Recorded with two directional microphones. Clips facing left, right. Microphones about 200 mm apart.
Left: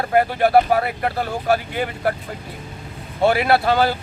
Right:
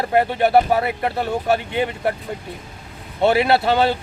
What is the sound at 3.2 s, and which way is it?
Speech, 25° right (ahead or behind).